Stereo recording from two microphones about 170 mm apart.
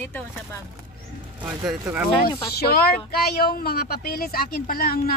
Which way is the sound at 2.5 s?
65° left (ahead or behind).